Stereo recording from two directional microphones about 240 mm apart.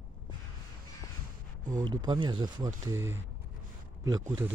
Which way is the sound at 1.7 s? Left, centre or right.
Centre.